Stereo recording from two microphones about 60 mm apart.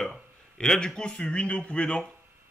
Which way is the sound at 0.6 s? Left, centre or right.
Centre.